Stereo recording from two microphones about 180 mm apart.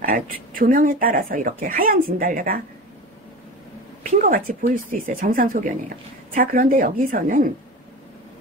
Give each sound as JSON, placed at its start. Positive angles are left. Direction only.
{"t": 0.0, "sound": "speech", "side_deg": -55}
{"t": 4.0, "sound": "speech", "side_deg": -50}